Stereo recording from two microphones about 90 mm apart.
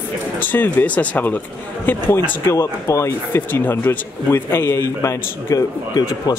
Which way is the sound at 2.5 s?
35° left (ahead or behind).